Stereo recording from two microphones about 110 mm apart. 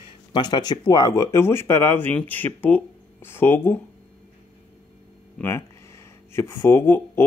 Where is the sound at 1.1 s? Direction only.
25° left (ahead or behind).